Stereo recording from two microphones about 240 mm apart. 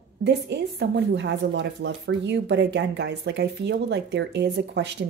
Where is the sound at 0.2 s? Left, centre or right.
Right.